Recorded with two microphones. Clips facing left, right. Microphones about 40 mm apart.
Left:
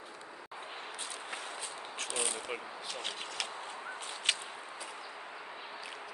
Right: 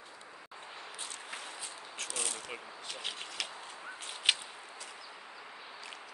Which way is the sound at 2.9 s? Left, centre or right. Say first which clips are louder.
Even; centre.